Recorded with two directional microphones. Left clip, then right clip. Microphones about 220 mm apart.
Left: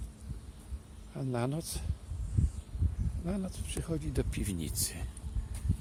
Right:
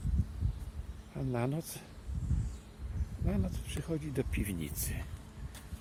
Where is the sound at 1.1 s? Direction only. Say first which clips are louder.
Left 1 dB; 10° left (ahead or behind).